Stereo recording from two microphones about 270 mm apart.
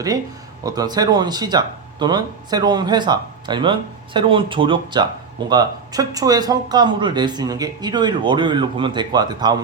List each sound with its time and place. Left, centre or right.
0.6 s speech: centre